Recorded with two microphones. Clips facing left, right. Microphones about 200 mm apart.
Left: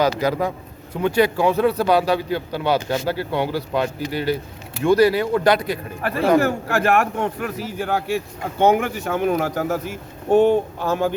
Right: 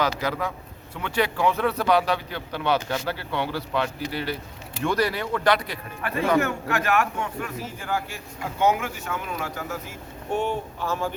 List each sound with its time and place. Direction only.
0.0 s a man's voice: 35° left (ahead or behind)
7.2 s speech: 65° left (ahead or behind)
10.3 s a man's voice: 35° left (ahead or behind)
10.8 s speech: 65° left (ahead or behind)